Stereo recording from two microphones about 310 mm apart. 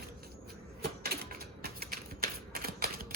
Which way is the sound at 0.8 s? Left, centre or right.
Right.